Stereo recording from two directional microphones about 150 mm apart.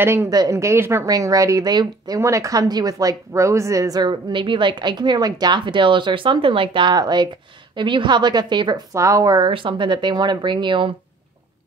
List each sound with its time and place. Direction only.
0.0 s a woman's voice: 15° right (ahead or behind)